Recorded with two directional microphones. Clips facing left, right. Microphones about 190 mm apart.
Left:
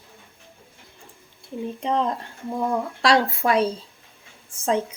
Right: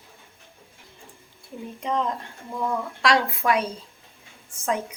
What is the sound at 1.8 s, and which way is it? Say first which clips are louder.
A woman's voice: left 2 dB; 30° left (ahead or behind).